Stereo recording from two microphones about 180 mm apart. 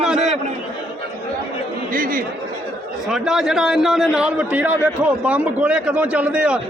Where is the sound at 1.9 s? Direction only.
50° right (ahead or behind).